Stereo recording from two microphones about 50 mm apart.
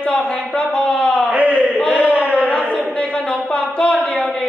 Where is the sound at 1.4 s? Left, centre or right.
Right.